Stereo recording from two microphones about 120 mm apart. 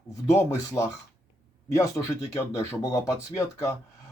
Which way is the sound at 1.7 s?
25° left (ahead or behind).